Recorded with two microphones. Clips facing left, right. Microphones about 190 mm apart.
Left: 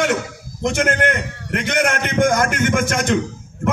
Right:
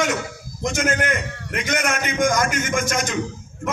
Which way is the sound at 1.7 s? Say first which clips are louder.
Left 4 dB; 60° left (ahead or behind).